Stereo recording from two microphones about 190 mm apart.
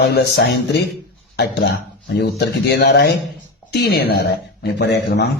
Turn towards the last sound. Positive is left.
turn(degrees=60)  # may be behind; listen again after turning